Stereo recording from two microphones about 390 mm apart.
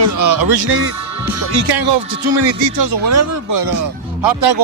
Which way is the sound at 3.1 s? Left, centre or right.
Right.